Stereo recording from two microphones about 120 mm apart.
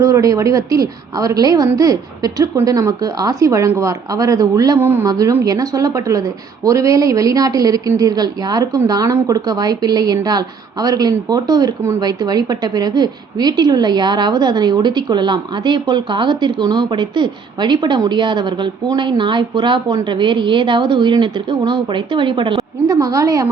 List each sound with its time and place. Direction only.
0.0 s a woman's voice: 25° right (ahead or behind); by 22.6 s 45° right (ahead or behind)
22.9 s a woman's voice: 30° right (ahead or behind)